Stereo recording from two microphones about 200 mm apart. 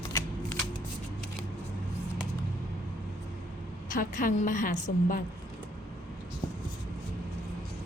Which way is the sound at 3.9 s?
40° left (ahead or behind).